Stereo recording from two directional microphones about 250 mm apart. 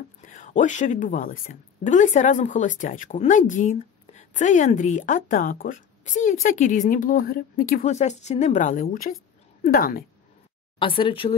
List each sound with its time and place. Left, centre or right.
0.2 s a woman's voice: left
10.8 s a woman's voice: left